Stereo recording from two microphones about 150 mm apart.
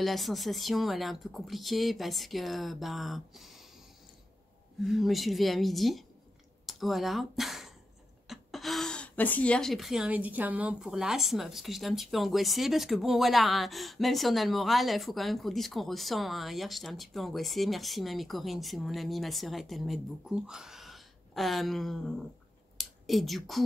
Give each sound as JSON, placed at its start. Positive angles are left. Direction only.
{"t": 0.0, "sound": "speech", "side_deg": 0}
{"t": 4.8, "sound": "speech", "side_deg": 0}
{"t": 22.8, "sound": "a sound", "side_deg": 0}